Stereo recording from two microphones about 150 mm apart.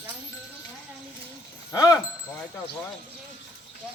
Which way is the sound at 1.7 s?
25° left (ahead or behind).